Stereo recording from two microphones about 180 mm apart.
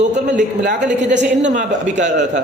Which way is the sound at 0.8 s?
80° right.